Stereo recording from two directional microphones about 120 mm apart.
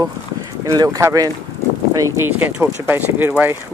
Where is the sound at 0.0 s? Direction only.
30° right (ahead or behind).